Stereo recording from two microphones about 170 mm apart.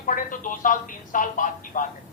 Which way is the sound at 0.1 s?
50° left (ahead or behind).